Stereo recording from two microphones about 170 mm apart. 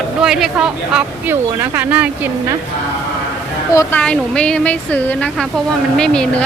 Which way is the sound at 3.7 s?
20° left (ahead or behind).